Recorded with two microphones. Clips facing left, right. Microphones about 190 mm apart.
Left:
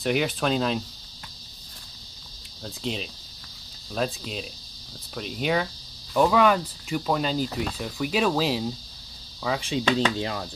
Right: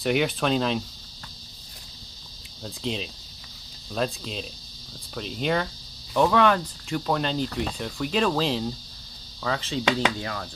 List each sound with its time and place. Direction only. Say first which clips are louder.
0.0 s speech: right 1 dB; centre (ahead or behind)
2.6 s speech: right 1 dB; centre (ahead or behind); by 10.5 s 20° left (ahead or behind)